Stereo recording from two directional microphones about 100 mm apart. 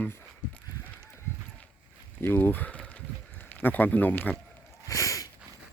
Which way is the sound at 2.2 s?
20° left (ahead or behind).